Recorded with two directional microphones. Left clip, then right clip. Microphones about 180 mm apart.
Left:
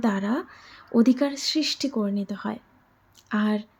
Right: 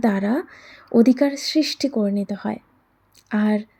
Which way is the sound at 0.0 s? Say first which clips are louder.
Right 5 dB; 15° right (ahead or behind).